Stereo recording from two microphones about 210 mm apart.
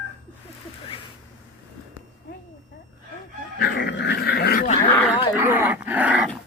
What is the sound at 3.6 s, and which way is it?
Dog, 55° left (ahead or behind).